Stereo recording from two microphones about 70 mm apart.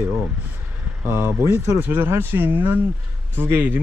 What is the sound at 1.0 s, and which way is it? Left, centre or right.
Speech, right.